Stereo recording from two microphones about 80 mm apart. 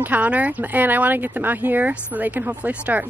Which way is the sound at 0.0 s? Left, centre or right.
Centre.